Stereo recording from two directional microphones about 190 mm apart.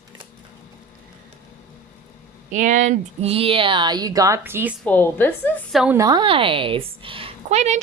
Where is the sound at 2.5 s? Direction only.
40° right (ahead or behind); by 4.8 s 10° right (ahead or behind).